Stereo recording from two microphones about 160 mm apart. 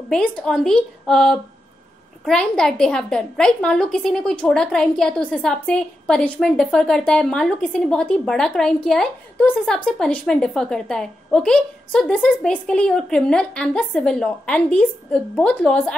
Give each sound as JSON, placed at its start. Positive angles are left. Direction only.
{"t": 0.1, "sound": "a woman's voice", "side_deg": 5}